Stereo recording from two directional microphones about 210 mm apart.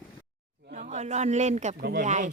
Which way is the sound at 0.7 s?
35° right (ahead or behind).